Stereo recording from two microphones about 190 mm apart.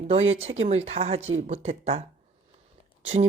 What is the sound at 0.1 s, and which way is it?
Speech, 30° right (ahead or behind).